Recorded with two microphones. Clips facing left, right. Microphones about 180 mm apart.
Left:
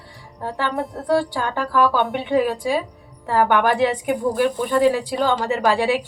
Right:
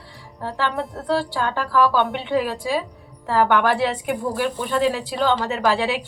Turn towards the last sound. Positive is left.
turn(degrees=15)  # may be behind; listen again after turning